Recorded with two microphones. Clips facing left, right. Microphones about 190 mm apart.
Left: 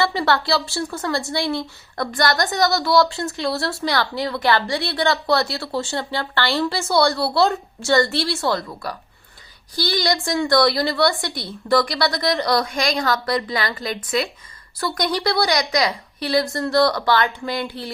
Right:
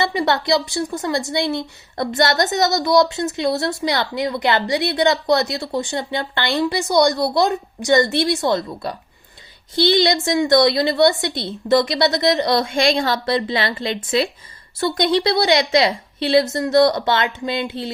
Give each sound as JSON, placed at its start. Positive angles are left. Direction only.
{"t": 0.0, "sound": "a woman's voice", "side_deg": -20}